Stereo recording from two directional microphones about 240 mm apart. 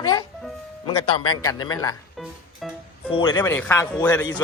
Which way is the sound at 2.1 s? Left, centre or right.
Centre.